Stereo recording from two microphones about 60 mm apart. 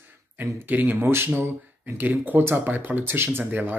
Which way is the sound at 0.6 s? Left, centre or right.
Right.